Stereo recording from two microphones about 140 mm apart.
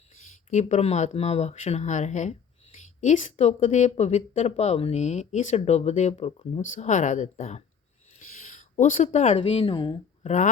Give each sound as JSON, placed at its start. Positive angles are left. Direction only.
{"t": 0.5, "sound": "speech", "side_deg": 55}
{"t": 8.2, "sound": "speech", "side_deg": 70}
{"t": 10.2, "sound": "speech", "side_deg": 60}